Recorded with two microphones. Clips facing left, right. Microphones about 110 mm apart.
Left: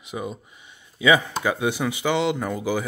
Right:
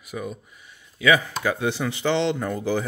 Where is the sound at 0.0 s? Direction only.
20° left (ahead or behind).